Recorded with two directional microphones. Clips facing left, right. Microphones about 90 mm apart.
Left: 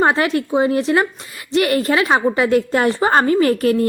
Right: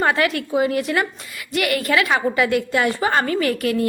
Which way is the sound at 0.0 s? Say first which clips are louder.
Left 3 dB; 30° left (ahead or behind).